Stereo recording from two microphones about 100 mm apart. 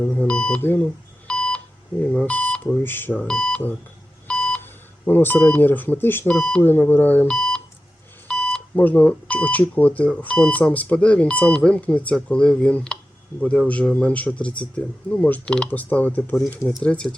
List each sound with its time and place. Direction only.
0.0 s speech: 15° left (ahead or behind)
1.3 s beep: 10° left (ahead or behind)
2.1 s speech: 15° left (ahead or behind)
3.2 s speech: 5° left (ahead or behind)
7.3 s beep: 5° left (ahead or behind)
8.7 s speech: 15° left (ahead or behind)